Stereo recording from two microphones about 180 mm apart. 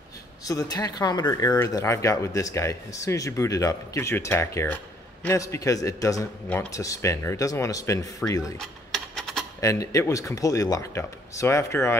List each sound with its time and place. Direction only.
0.5 s a man's voice: 20° left (ahead or behind)
8.5 s mechanisms: centre (ahead or behind)
9.6 s a man's voice: 15° left (ahead or behind)